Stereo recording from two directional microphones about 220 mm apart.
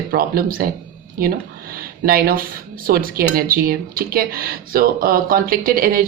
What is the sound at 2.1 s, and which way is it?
Speech, 45° right (ahead or behind).